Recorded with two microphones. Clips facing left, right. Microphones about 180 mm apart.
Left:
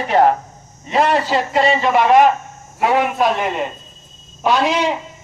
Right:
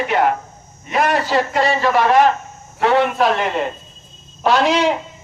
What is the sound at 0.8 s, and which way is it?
A man's voice, 25° left (ahead or behind).